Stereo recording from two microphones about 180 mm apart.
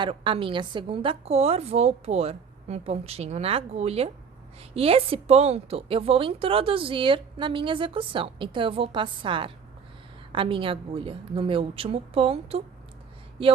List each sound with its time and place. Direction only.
0.0 s a woman's voice: 30° right (ahead or behind)